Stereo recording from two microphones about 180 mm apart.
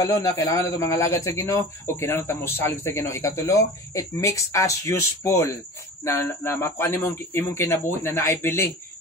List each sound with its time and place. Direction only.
0.0 s speech: 20° left (ahead or behind)